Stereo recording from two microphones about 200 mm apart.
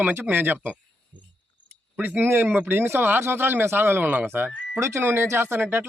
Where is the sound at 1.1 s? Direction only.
40° right (ahead or behind).